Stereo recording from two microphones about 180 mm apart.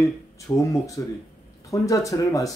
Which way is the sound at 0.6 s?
15° left (ahead or behind).